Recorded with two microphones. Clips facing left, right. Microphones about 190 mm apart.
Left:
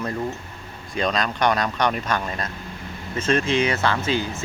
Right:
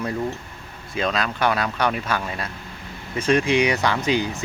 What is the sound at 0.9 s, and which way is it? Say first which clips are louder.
Speech: even; 5° right (ahead or behind).